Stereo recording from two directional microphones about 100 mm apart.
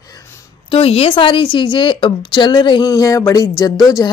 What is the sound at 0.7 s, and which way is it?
A woman's voice, 75° left (ahead or behind).